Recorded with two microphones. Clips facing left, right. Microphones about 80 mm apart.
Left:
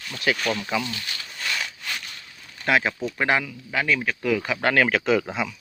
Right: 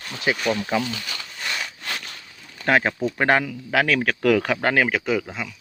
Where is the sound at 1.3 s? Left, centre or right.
Centre.